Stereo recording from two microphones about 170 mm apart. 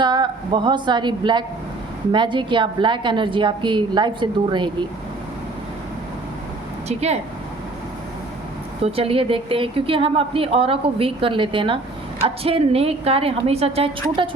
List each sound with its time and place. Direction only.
0.0 s a woman's voice: 25° right (ahead or behind)
6.8 s a woman's voice: 40° right (ahead or behind)
8.8 s a woman's voice: 35° right (ahead or behind)